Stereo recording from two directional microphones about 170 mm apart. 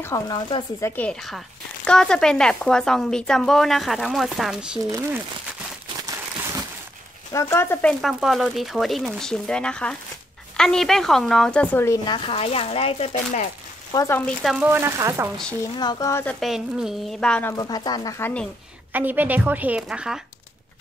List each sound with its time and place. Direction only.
0.0 s speech: 20° left (ahead or behind)
0.8 s speech: 10° left (ahead or behind)
7.3 s speech: 15° left (ahead or behind)
8.0 s speech: centre (ahead or behind)
12.1 s speech: 35° left (ahead or behind)
13.9 s speech: 15° left (ahead or behind)
14.4 s speech: centre (ahead or behind)
14.7 s a woman's voice: 15° right (ahead or behind)
15.6 s speech: 20° left (ahead or behind)
16.3 s speech: centre (ahead or behind)
17.6 s speech: 25° left (ahead or behind)
18.2 s speech: 5° left (ahead or behind)
18.9 s a woman's voice: 10° right (ahead or behind)